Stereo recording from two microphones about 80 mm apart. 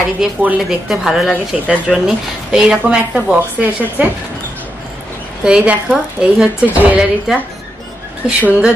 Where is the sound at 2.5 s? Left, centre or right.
Centre.